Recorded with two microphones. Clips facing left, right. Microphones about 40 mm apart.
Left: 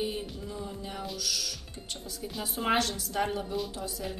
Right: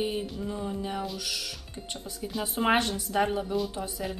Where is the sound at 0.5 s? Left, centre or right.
Right.